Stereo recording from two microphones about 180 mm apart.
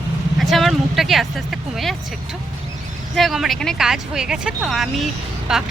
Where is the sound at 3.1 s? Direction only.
Centre (ahead or behind).